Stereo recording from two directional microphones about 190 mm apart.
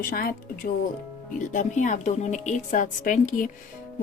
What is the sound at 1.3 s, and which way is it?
A woman's voice, 40° left (ahead or behind).